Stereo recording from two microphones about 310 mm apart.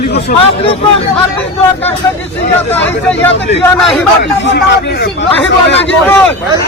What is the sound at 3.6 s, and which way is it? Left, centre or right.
Speech, centre.